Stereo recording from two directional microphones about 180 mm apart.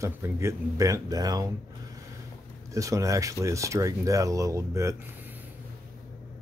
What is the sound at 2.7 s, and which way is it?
Speech, 15° right (ahead or behind).